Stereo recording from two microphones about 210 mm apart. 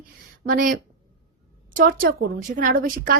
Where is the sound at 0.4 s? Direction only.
40° right (ahead or behind).